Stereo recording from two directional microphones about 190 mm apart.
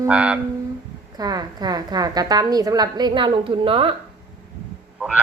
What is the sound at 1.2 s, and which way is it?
A woman's voice, 20° right (ahead or behind).